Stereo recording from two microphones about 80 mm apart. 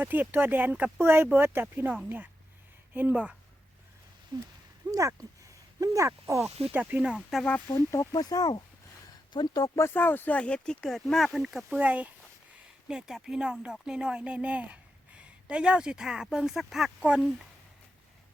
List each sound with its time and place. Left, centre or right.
0.0 s speech: right
4.3 s speech: right
4.9 s speech: right
6.7 s speech: right
7.2 s speech: centre
7.7 s speech: left
8.1 s speech: left
9.7 s speech: left; by 11.8 s centre
11.8 s speech: centre
12.9 s a woman's voice: centre